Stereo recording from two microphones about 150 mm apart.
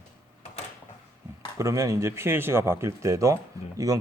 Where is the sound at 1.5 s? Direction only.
20° right (ahead or behind).